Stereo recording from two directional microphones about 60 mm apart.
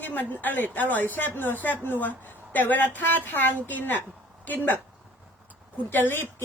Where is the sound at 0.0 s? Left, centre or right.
Left.